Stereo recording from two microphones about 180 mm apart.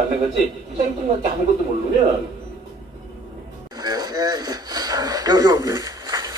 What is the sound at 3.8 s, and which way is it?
Speech, 20° right (ahead or behind).